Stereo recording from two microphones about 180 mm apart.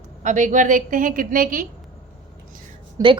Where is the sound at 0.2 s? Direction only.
45° right (ahead or behind).